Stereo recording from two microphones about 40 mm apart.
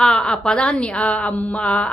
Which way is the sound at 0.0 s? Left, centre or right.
Left.